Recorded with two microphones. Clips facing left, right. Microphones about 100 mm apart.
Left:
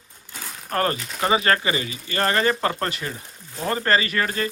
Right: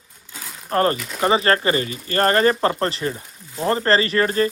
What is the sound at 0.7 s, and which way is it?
Speech, 30° right (ahead or behind).